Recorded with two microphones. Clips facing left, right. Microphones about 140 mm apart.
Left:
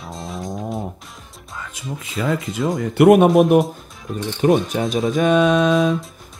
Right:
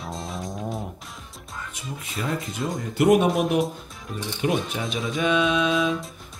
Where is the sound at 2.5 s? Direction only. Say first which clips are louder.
Left 8 dB; 75° left (ahead or behind); by 3.3 s 60° left (ahead or behind).